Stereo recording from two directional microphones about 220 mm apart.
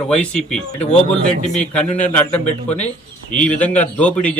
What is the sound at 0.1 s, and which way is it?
Speech, 5° left (ahead or behind).